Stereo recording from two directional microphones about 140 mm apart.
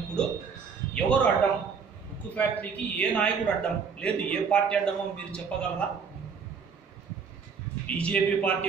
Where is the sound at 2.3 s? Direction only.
10° left (ahead or behind).